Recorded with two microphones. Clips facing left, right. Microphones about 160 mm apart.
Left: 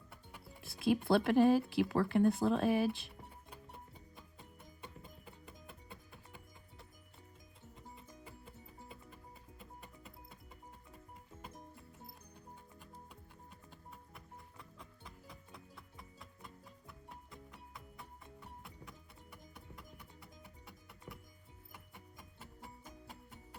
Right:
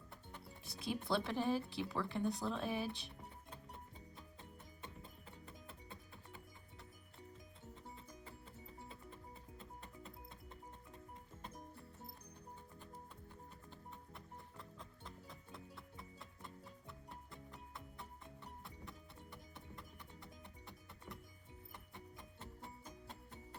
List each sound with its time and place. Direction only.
0.1 s music: 5° left (ahead or behind)
0.9 s speech: 70° left (ahead or behind)
9.6 s music: 5° left (ahead or behind)
14.6 s music: 5° left (ahead or behind)